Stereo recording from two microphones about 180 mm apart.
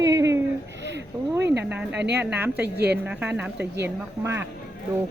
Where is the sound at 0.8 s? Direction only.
75° right (ahead or behind).